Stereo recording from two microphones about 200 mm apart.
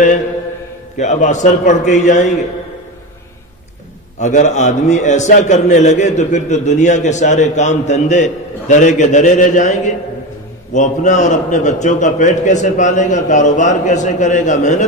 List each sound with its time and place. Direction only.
0.9 s a man's voice: 35° left (ahead or behind)
4.2 s a man's voice: 40° left (ahead or behind)